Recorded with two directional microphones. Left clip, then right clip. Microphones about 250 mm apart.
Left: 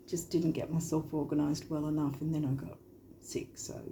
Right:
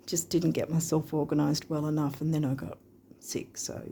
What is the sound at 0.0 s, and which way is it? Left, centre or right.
Speech, right.